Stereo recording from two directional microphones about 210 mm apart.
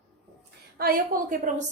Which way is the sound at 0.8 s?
45° right (ahead or behind).